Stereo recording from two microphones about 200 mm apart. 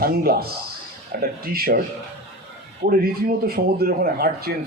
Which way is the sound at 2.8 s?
50° right (ahead or behind).